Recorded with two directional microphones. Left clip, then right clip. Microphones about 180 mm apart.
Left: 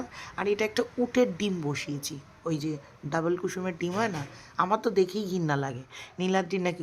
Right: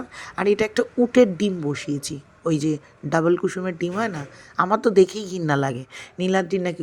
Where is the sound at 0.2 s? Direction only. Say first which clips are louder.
Right 7 dB; 25° right (ahead or behind).